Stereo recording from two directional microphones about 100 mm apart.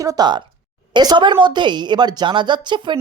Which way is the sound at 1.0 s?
50° right (ahead or behind).